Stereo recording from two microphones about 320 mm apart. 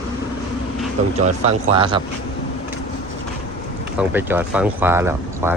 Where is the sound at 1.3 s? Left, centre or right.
Centre.